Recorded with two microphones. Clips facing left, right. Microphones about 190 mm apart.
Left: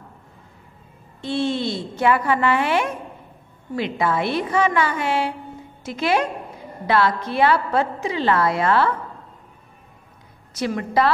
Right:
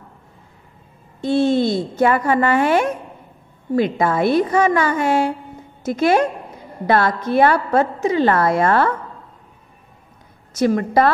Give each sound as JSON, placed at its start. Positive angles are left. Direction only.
{"t": 1.2, "sound": "a woman's voice", "side_deg": -45}
{"t": 10.5, "sound": "a woman's voice", "side_deg": -45}